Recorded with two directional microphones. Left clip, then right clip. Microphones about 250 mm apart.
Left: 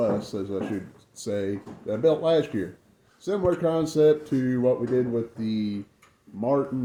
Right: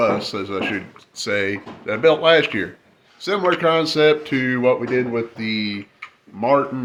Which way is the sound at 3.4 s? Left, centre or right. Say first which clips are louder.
Right 7 dB; right.